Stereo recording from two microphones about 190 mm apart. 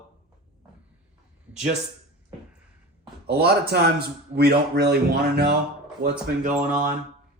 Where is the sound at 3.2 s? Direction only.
55° right (ahead or behind).